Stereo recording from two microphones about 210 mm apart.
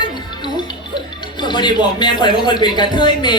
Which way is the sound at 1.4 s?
20° left (ahead or behind).